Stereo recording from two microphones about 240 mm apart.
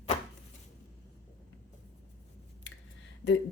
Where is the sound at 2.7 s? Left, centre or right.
Left.